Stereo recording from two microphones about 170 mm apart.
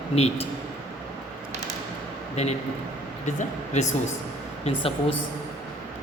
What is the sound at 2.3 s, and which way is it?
A man's voice, 40° left (ahead or behind).